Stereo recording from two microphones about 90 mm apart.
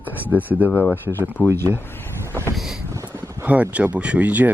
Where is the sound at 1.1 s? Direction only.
25° left (ahead or behind).